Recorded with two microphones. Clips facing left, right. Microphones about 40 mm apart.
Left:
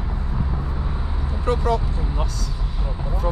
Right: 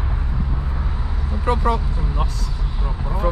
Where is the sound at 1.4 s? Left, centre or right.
Right.